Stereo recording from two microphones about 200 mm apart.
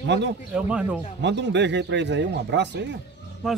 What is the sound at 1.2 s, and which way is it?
Speech, 60° right (ahead or behind).